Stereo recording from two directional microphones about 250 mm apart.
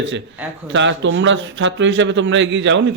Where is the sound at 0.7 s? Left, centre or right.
Right.